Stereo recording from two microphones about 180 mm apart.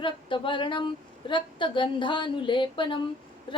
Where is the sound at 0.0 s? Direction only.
25° left (ahead or behind).